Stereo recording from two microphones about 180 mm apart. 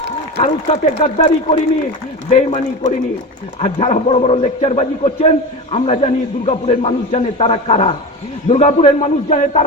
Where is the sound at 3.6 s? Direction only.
35° left (ahead or behind).